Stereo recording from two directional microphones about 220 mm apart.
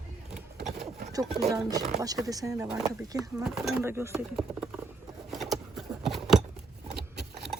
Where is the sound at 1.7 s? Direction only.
15° right (ahead or behind).